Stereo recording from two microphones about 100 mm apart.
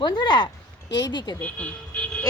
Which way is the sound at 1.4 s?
15° left (ahead or behind).